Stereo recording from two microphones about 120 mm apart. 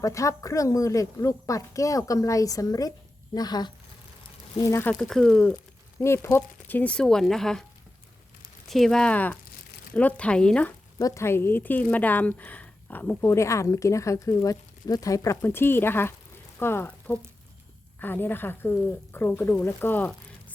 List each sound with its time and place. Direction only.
0.0 s speech: 25° left (ahead or behind)
4.8 s speech: 10° left (ahead or behind)
6.0 s speech: 20° left (ahead or behind); by 7.6 s 5° left (ahead or behind)
8.7 s speech: 5° left (ahead or behind)
10.9 s speech: 25° left (ahead or behind)